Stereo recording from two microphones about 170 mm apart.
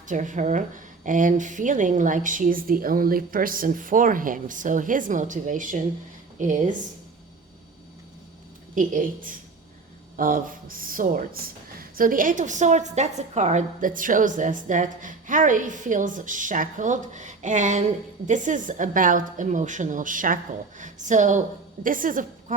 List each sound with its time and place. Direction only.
0.1 s a woman's voice: 45° right (ahead or behind)
8.7 s a woman's voice: 50° right (ahead or behind)